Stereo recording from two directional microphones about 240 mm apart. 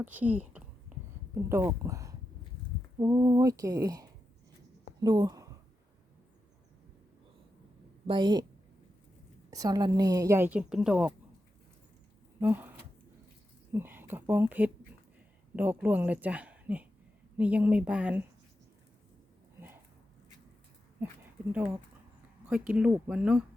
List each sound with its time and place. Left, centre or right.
0.0 s a sound: centre
1.5 s a woman's voice: centre
8.0 s speech: centre
9.5 s a woman's voice: centre
12.4 s speech: centre
13.7 s a woman's voice: centre
19.5 s a sound: centre
21.0 s a woman's voice: centre
22.4 s speech: centre